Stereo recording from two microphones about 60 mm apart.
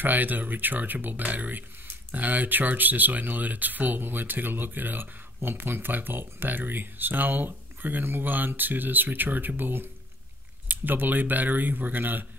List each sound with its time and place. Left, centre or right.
0.0 s speech: right